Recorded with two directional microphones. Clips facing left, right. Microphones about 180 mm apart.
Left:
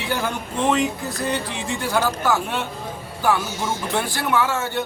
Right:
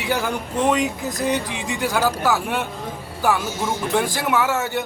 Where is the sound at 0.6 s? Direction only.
15° right (ahead or behind).